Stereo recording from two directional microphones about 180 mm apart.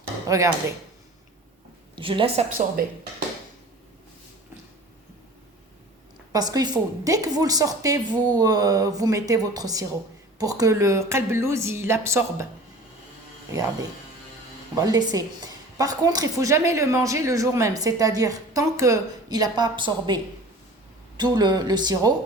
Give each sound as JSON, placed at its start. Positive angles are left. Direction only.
{"t": 0.3, "sound": "speech", "side_deg": -15}
{"t": 2.0, "sound": "a woman's voice", "side_deg": -30}
{"t": 6.3, "sound": "a woman's voice", "side_deg": -20}
{"t": 13.5, "sound": "a woman's voice", "side_deg": -20}